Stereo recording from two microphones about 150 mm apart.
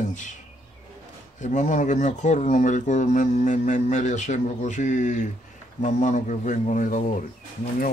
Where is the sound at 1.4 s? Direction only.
55° left (ahead or behind).